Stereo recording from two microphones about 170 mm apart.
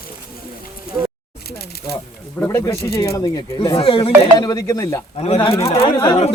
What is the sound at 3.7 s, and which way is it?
Speech, 30° left (ahead or behind).